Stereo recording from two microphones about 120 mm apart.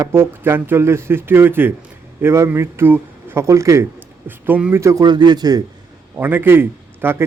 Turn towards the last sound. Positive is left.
turn(degrees=-20)  # may be behind; listen again after turning